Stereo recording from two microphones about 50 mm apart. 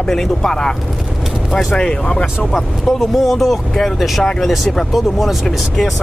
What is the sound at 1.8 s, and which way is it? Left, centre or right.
Speech, centre.